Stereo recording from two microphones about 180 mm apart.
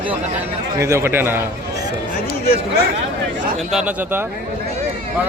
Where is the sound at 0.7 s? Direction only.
15° right (ahead or behind).